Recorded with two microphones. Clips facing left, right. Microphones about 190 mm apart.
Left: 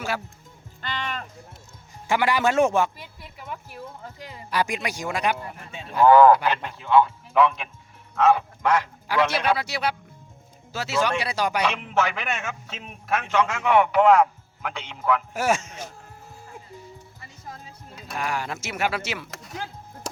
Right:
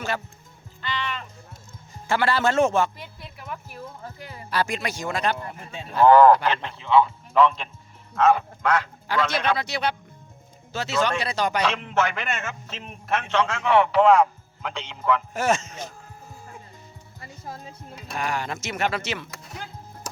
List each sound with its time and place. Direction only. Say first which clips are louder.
0.8 s music: right 1 dB; 50° left (ahead or behind)
2.0 s a man's voice: even; 15° left (ahead or behind)
18.1 s a man's voice: right 1 dB; 5° left (ahead or behind)